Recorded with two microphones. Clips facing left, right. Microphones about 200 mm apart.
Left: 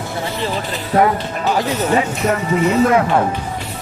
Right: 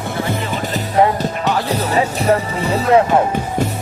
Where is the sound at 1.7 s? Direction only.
35° right (ahead or behind).